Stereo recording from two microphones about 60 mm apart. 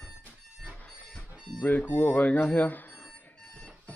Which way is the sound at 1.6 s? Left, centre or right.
Left.